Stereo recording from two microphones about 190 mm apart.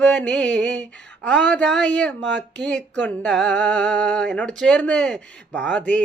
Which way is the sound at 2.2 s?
70° right (ahead or behind).